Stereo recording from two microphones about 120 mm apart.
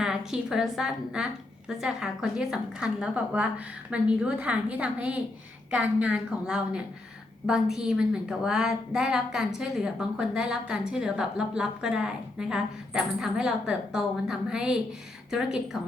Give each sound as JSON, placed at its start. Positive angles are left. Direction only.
{"t": 0.0, "sound": "a woman's voice", "side_deg": -5}